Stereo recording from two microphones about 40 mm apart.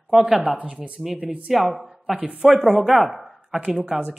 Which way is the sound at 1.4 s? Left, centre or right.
Centre.